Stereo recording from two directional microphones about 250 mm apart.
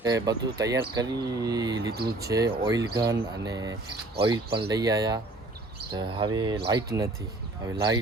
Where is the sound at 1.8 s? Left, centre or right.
Right.